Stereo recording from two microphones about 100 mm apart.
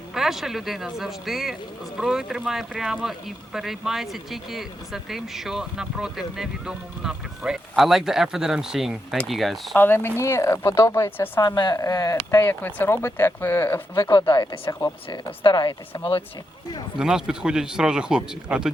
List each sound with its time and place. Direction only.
0.1 s speech: 5° right (ahead or behind)
9.7 s speech: 20° left (ahead or behind)
11.4 s speech: 45° left (ahead or behind)
11.8 s speech: 35° left (ahead or behind)
12.5 s speech: 20° left (ahead or behind)
14.1 s speech: 50° left (ahead or behind)
14.7 s speech: 35° left (ahead or behind)
15.1 s speech: 50° left (ahead or behind); by 16.2 s 65° left (ahead or behind)
17.0 s speech: 5° right (ahead or behind)